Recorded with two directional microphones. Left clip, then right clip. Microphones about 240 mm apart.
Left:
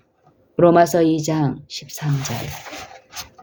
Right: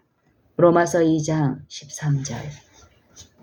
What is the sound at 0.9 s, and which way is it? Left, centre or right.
Speech, left.